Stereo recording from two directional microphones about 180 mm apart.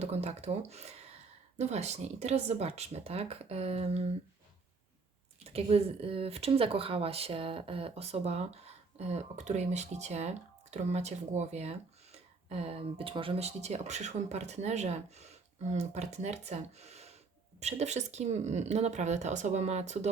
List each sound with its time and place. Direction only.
0.0 s speech: 35° right (ahead or behind)
5.4 s speech: 35° right (ahead or behind)